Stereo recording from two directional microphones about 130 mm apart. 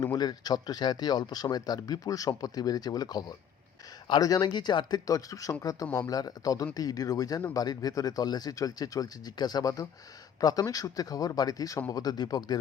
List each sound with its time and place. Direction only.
0.0 s speech: 30° left (ahead or behind)